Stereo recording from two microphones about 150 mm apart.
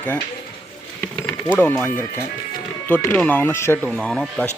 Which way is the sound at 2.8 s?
10° left (ahead or behind).